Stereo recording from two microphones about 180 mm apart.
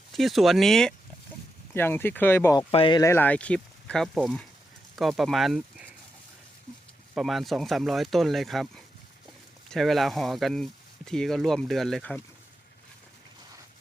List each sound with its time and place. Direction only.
0.1 s speech: centre (ahead or behind)
2.6 s speech: 25° left (ahead or behind)
3.0 s speech: 15° left (ahead or behind)
7.1 s speech: centre (ahead or behind)